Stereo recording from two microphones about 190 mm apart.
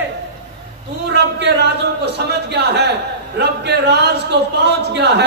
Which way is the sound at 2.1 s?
60° right (ahead or behind).